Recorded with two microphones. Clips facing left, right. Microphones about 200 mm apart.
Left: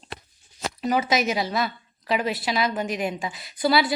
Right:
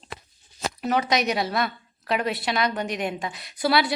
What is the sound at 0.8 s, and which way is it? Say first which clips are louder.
A woman's voice: left 1 dB; centre (ahead or behind).